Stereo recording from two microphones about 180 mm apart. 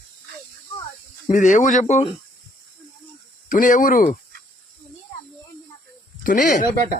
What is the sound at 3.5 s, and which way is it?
Speech, 50° left (ahead or behind).